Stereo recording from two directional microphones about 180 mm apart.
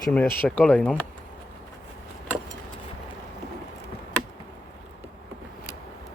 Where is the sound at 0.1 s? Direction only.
5° left (ahead or behind).